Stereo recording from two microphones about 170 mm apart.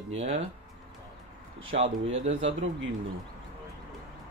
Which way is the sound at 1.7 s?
35° right (ahead or behind).